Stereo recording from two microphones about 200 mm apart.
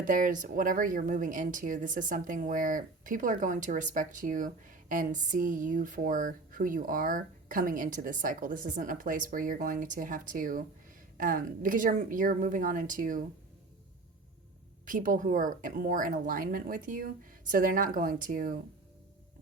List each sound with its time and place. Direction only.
0.0 s speech: 40° right (ahead or behind)
14.8 s speech: 40° right (ahead or behind)